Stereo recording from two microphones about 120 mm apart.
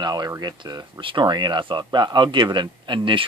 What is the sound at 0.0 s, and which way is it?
Speech, 35° right (ahead or behind).